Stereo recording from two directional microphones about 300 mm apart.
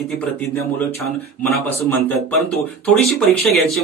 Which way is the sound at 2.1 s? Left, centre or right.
Centre.